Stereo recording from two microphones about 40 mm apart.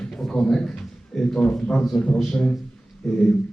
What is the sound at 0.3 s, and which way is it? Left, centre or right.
A man's voice, centre.